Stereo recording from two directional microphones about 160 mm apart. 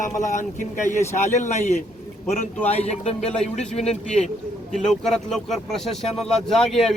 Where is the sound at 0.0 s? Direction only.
50° left (ahead or behind).